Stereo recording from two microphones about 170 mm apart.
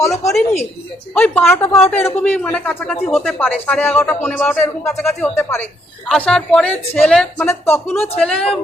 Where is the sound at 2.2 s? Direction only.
10° left (ahead or behind).